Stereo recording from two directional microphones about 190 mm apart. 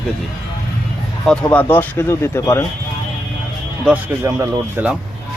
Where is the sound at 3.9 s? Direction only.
10° right (ahead or behind).